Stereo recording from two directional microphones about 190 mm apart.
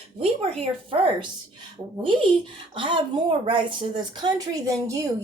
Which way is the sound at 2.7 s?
25° right (ahead or behind).